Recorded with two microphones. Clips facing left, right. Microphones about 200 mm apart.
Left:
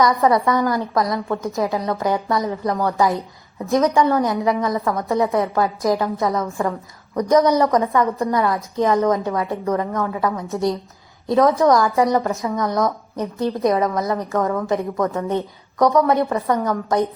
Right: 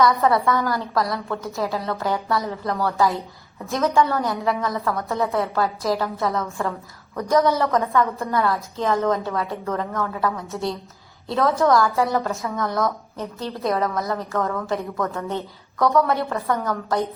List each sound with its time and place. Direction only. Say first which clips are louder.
0.0 s a woman's voice: left 2 dB; 15° left (ahead or behind)